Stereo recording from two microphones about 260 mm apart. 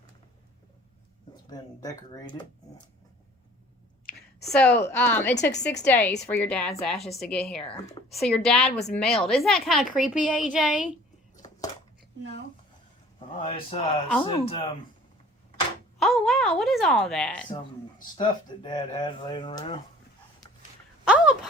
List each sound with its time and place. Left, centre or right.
1.5 s speech: centre
4.5 s speech: centre
5.3 s a woman's voice: left
5.8 s a woman's voice: centre
13.1 s speech: left
16.0 s a woman's voice: centre
18.0 s speech: centre
21.0 s a sound: centre